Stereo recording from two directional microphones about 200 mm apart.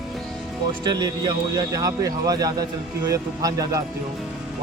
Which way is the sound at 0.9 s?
20° right (ahead or behind).